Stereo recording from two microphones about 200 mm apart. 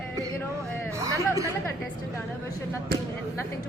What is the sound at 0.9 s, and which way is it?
Speech, 15° right (ahead or behind).